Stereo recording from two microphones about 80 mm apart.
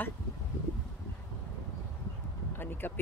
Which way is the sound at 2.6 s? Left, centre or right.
Left.